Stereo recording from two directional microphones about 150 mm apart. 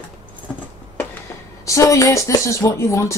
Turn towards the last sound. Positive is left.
turn(degrees=20)  # may be behind; listen again after turning